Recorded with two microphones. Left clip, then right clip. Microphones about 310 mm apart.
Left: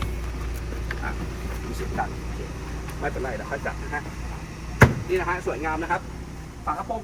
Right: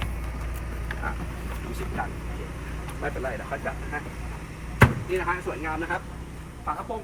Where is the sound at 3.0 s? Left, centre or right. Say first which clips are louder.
Left 2 dB; centre.